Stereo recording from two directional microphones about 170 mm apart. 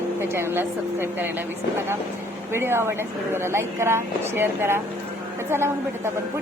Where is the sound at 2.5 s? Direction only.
15° right (ahead or behind).